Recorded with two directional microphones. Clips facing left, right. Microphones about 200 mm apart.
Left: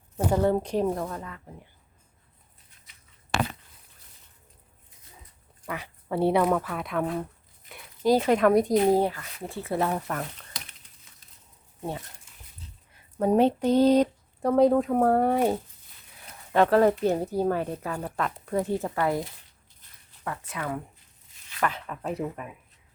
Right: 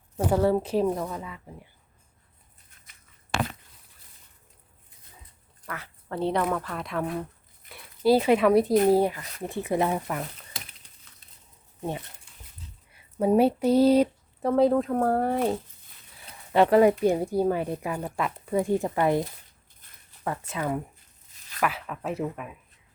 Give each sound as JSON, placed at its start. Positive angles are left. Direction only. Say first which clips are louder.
{"t": 0.3, "sound": "speech", "louder": "right 1 dB", "side_deg": -5}
{"t": 5.6, "sound": "a woman's voice", "louder": "left 4 dB", "side_deg": 15}
{"t": 9.0, "sound": "speech", "louder": "right 1 dB", "side_deg": -15}
{"t": 12.9, "sound": "speech", "louder": "right 1 dB", "side_deg": -10}
{"t": 16.5, "sound": "speech", "louder": "right 2 dB", "side_deg": -10}
{"t": 20.5, "sound": "speech", "louder": "right 3 dB", "side_deg": -25}
{"t": 21.6, "sound": "speech", "louder": "right 1 dB", "side_deg": -5}